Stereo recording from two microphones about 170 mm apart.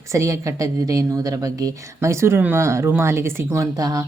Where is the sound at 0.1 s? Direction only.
20° right (ahead or behind).